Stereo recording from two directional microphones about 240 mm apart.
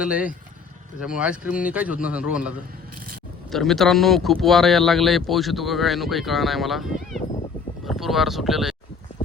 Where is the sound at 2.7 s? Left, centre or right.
Right.